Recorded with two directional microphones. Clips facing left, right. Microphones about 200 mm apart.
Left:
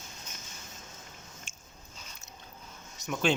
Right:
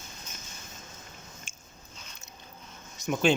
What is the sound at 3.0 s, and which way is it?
Speech, 5° right (ahead or behind).